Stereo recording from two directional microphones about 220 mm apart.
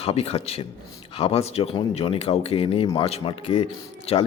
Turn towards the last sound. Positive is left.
turn(degrees=25)  # may be behind; listen again after turning